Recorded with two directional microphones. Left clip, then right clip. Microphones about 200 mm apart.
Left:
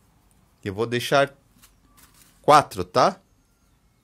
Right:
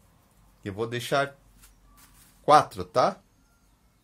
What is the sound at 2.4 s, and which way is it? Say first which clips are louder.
Speech: left 3 dB; 35° left (ahead or behind).